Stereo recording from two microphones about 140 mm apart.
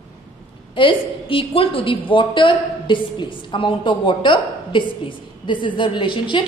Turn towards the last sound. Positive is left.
turn(degrees=35)  # may be behind; listen again after turning